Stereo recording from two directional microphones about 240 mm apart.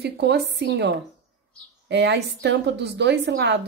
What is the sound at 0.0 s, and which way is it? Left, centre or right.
A woman's voice, right.